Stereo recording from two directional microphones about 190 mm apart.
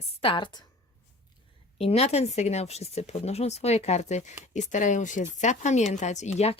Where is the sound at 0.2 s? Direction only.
25° left (ahead or behind).